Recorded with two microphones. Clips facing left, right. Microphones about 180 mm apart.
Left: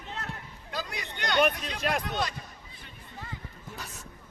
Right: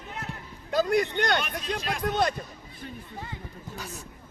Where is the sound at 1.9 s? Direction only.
55° left (ahead or behind).